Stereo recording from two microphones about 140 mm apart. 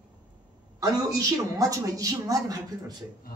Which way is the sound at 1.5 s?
25° right (ahead or behind).